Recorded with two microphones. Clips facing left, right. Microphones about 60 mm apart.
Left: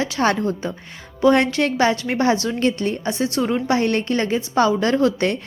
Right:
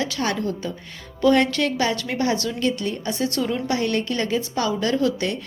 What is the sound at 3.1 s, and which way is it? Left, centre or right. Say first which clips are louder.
A woman's voice: left 2 dB; left.